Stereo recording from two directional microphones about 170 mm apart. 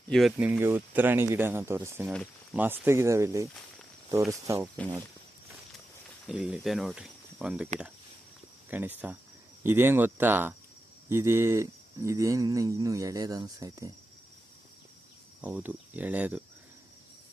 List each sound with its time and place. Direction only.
0.1 s speech: centre (ahead or behind); by 4.7 s 20° right (ahead or behind)
6.2 s speech: 5° right (ahead or behind)
8.7 s speech: 10° right (ahead or behind)
15.4 s speech: 10° right (ahead or behind)